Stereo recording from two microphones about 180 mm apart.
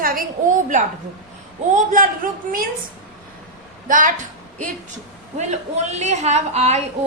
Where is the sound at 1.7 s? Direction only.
50° right (ahead or behind).